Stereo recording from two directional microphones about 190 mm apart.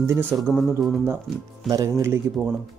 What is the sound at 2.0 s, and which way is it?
Speech, 10° right (ahead or behind).